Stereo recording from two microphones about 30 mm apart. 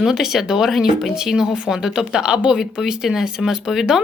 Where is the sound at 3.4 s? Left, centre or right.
Centre.